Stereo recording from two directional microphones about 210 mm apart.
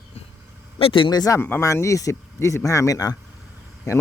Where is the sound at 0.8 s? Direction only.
25° left (ahead or behind).